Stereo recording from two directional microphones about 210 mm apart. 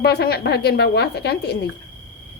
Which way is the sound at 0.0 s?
50° left (ahead or behind).